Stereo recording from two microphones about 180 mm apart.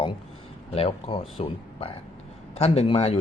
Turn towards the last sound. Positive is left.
turn(degrees=30)  # may be behind; listen again after turning